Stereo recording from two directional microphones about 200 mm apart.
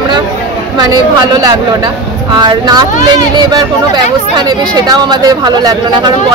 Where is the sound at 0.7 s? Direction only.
20° right (ahead or behind).